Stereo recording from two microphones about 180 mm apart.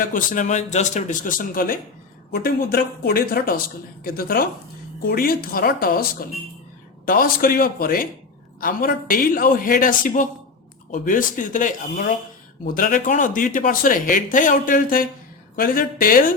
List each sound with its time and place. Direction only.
0.0 s speech: 50° left (ahead or behind)